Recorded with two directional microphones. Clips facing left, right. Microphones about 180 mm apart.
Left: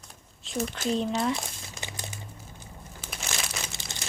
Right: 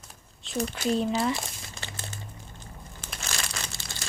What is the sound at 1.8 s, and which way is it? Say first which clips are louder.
Crumpling: left 1 dB; 15° left (ahead or behind).